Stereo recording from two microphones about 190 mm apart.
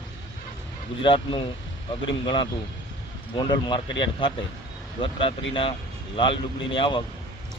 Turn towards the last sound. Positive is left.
turn(degrees=25)  # may be behind; listen again after turning